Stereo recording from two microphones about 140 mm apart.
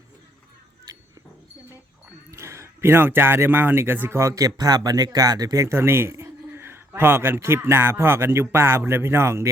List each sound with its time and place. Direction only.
2.3 s a man's voice: 20° right (ahead or behind)